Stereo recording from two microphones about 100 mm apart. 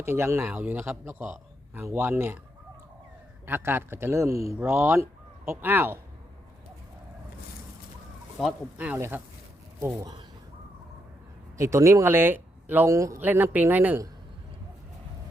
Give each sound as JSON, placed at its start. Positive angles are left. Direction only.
{"t": 0.0, "sound": "a man's voice", "side_deg": -25}
{"t": 3.4, "sound": "a man's voice", "side_deg": -20}
{"t": 9.0, "sound": "a man's voice", "side_deg": -25}
{"t": 10.0, "sound": "speech", "side_deg": -40}
{"t": 11.5, "sound": "speech", "side_deg": -30}
{"t": 12.9, "sound": "speech", "side_deg": -30}
{"t": 13.1, "sound": "speech", "side_deg": -20}